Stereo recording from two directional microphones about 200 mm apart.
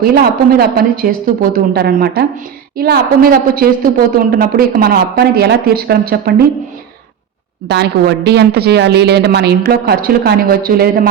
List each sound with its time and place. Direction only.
0.0 s a woman's voice: 50° right (ahead or behind)
7.7 s a woman's voice: 55° right (ahead or behind)